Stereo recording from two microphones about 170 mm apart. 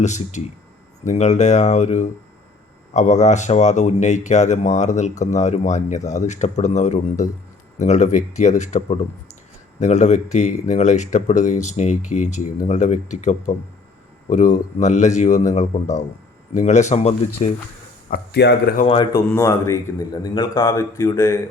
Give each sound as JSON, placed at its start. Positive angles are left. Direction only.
{"t": 0.0, "sound": "speech", "side_deg": 45}
{"t": 18.1, "sound": "speech", "side_deg": 80}
{"t": 18.9, "sound": "speech", "side_deg": 30}
{"t": 19.3, "sound": "speech", "side_deg": 15}